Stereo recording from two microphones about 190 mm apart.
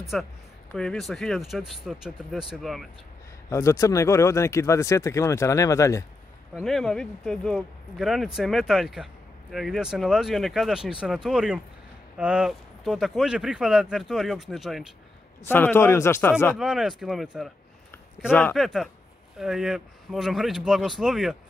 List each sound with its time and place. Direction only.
0.1 s speech: 5° left (ahead or behind)
3.4 s speech: 15° left (ahead or behind)
6.5 s speech: centre (ahead or behind)
15.4 s speech: 10° left (ahead or behind)
16.5 s speech: centre (ahead or behind)